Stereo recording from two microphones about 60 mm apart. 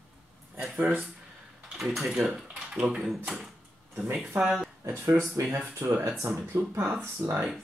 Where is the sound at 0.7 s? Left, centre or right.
Right.